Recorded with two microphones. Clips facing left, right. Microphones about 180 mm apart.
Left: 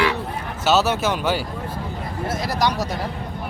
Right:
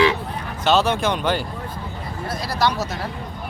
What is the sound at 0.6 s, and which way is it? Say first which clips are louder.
Speech: even; 5° left (ahead or behind).